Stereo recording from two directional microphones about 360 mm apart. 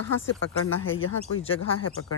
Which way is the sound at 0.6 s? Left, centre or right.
Left.